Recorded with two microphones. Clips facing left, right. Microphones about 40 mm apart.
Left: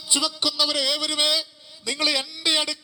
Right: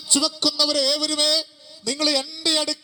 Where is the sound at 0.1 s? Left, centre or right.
Left.